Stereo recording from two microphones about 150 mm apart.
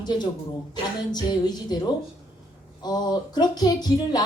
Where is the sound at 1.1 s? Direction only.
30° left (ahead or behind).